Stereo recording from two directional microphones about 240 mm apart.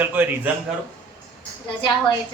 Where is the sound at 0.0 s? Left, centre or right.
Centre.